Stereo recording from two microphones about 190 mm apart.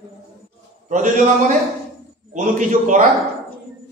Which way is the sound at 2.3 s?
40° right (ahead or behind).